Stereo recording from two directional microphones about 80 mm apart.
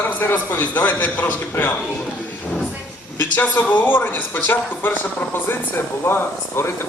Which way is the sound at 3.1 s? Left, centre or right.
Left.